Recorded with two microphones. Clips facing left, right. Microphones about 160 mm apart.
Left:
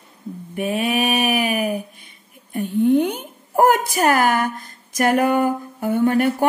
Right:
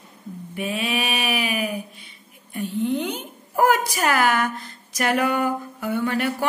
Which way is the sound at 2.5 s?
50° left (ahead or behind).